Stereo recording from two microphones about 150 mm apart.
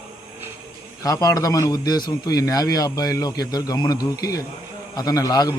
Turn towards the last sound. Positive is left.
turn(degrees=25)  # may be behind; listen again after turning